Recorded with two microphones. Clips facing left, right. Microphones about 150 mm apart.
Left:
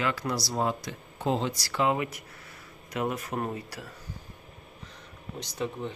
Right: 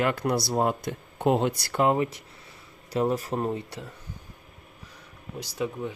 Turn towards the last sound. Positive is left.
turn(degrees=-5)  # may be behind; listen again after turning